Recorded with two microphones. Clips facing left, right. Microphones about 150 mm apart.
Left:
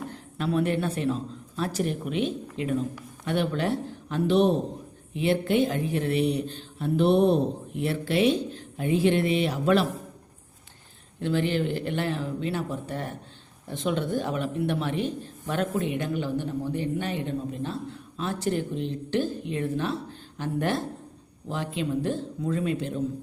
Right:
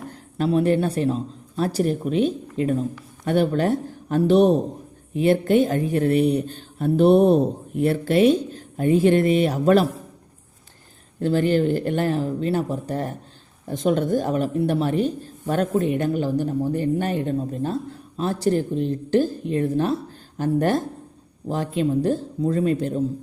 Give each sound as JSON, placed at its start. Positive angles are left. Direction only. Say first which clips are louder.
{"t": 0.1, "sound": "speech", "louder": "right 8 dB", "side_deg": -35}
{"t": 11.2, "sound": "speech", "louder": "right 6 dB", "side_deg": -40}